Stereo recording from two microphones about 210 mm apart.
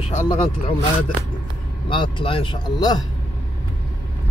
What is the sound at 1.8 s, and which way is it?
Speech, 25° left (ahead or behind).